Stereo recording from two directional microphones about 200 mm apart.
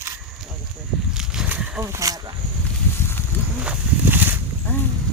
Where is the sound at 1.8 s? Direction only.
15° right (ahead or behind).